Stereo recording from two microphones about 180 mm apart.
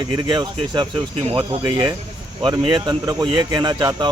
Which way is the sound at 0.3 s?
25° right (ahead or behind).